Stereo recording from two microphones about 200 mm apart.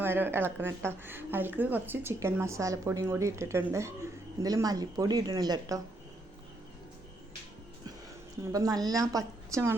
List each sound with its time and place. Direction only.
0.0 s a woman's voice: 10° right (ahead or behind)
8.5 s a woman's voice: 20° right (ahead or behind)